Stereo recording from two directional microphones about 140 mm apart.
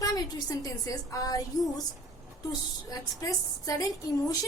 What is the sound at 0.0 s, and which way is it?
A woman's voice, 25° left (ahead or behind).